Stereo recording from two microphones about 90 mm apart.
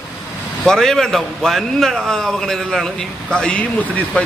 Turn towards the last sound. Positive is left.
turn(degrees=15)  # may be behind; listen again after turning